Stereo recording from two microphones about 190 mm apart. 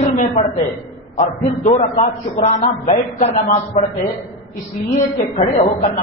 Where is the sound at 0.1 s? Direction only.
40° left (ahead or behind).